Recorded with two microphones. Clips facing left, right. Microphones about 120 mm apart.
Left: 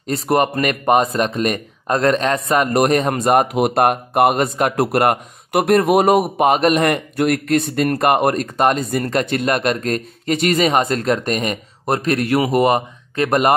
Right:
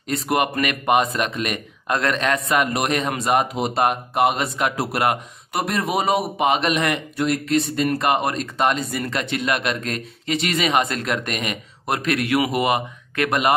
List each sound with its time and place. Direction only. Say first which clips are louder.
0.0 s speech: left 4 dB; 40° left (ahead or behind)